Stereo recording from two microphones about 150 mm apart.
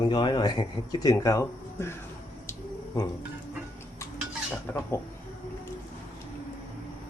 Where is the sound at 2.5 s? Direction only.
25° left (ahead or behind).